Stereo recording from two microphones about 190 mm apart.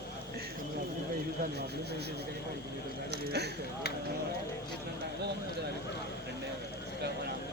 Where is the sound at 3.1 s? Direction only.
60° right (ahead or behind).